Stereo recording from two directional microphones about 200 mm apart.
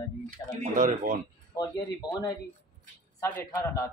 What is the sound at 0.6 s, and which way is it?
Speech, 40° right (ahead or behind).